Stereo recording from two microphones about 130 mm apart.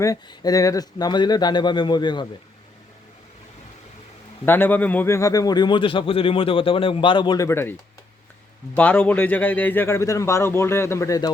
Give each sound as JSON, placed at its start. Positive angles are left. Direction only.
{"t": 0.0, "sound": "speech", "side_deg": 25}
{"t": 4.4, "sound": "speech", "side_deg": 15}
{"t": 7.4, "sound": "a man's voice", "side_deg": 20}